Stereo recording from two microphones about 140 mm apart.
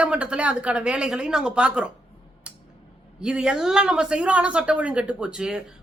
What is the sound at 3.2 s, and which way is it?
Speech, 5° right (ahead or behind).